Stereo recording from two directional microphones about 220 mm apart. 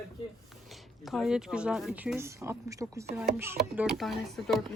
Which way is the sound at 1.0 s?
Centre (ahead or behind).